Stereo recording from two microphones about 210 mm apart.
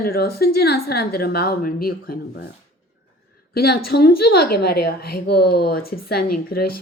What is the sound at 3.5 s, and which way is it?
A woman's voice, 50° left (ahead or behind).